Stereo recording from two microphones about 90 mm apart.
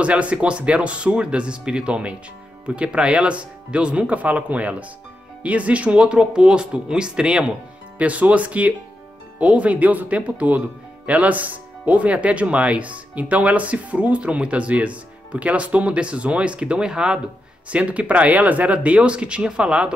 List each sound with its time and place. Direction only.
0.0 s speech: 15° right (ahead or behind)